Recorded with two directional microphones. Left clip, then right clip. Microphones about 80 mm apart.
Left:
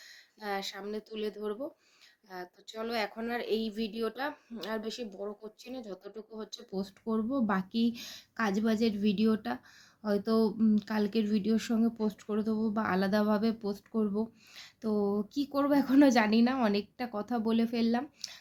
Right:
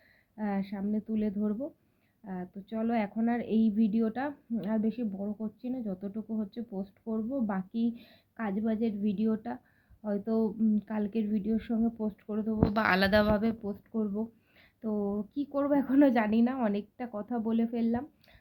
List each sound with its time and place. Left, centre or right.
0.3 s a woman's voice: left
2.7 s speech: left
4.5 s a woman's voice: left
7.1 s a woman's voice: left
10.0 s speech: left
12.7 s a woman's voice: centre
13.1 s speech: left
15.4 s a woman's voice: left